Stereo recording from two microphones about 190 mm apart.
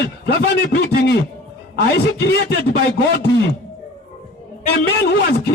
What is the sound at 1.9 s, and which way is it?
Speech, 60° left (ahead or behind).